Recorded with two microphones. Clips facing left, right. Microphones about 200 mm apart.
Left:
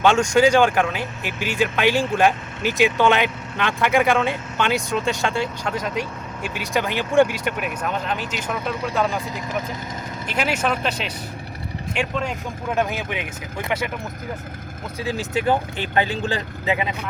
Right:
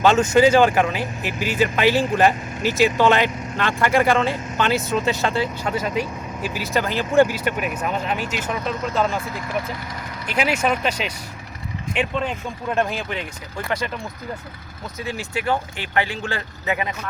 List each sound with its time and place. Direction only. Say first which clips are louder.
0.0 s speech: right 1 dB; 5° right (ahead or behind)
8.6 s speech: even; 10° left (ahead or behind)
10.3 s speech: right 2 dB; 5° right (ahead or behind); by 13.7 s 15° left (ahead or behind)
16.3 s speech: left 2 dB; 20° left (ahead or behind)